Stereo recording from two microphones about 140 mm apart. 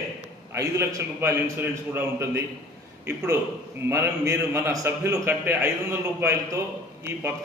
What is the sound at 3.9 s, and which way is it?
A man's voice, 20° right (ahead or behind).